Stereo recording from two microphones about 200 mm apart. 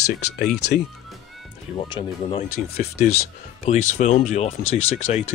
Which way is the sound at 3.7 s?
30° left (ahead or behind).